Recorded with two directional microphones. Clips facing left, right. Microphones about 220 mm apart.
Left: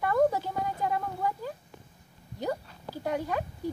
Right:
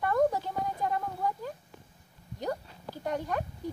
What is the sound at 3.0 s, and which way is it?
Speech, 10° left (ahead or behind).